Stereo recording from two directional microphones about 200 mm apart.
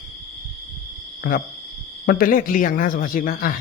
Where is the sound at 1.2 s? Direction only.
45° left (ahead or behind).